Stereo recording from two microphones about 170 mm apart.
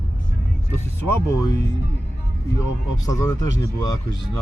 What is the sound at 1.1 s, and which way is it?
Speech, 20° left (ahead or behind).